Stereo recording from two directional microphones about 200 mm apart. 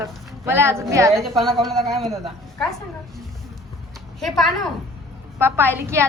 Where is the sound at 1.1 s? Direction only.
Centre (ahead or behind).